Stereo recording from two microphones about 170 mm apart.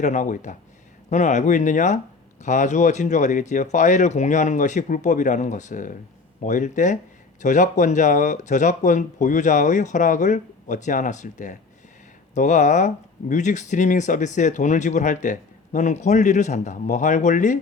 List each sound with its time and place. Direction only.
0.0 s speech: 45° left (ahead or behind)